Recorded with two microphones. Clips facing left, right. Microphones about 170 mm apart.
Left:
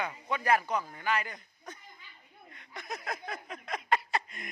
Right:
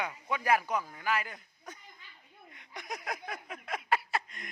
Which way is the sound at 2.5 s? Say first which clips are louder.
Left 1 dB; 15° right (ahead or behind).